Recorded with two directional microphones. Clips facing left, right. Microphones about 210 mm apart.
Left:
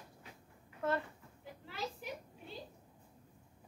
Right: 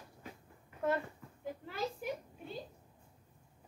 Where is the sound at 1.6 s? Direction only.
50° right (ahead or behind).